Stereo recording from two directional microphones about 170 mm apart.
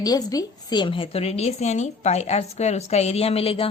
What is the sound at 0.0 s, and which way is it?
A child's voice, 20° left (ahead or behind).